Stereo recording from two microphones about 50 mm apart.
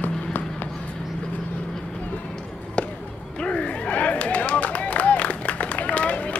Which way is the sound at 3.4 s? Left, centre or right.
Left.